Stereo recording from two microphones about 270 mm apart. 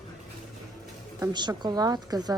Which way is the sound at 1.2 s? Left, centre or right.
Centre.